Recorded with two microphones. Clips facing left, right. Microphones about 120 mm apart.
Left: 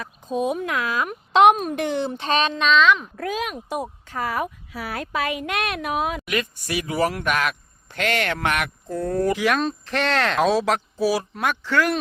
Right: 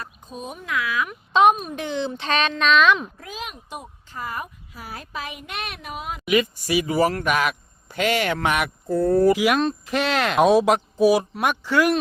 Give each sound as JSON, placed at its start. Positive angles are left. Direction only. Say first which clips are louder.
{"t": 0.3, "sound": "speech", "louder": "left 14 dB", "side_deg": 90}
{"t": 0.7, "sound": "speech", "louder": "left 1 dB", "side_deg": 40}
{"t": 1.3, "sound": "speech", "louder": "left 2 dB", "side_deg": 80}
{"t": 2.2, "sound": "speech", "louder": "left 1 dB", "side_deg": 35}
{"t": 2.7, "sound": "speech", "louder": "even", "side_deg": -15}
{"t": 3.2, "sound": "speech", "louder": "left 8 dB", "side_deg": 60}
{"t": 4.1, "sound": "speech", "louder": "left 5 dB", "side_deg": 85}
{"t": 6.2, "sound": "speech", "louder": "right 5 dB", "side_deg": -5}